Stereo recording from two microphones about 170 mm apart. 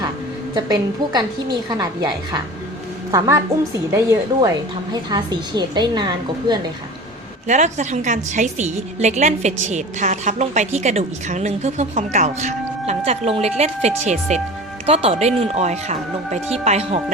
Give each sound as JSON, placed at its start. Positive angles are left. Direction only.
{"t": 0.5, "sound": "a woman's voice", "side_deg": -25}
{"t": 7.4, "sound": "a woman's voice", "side_deg": -45}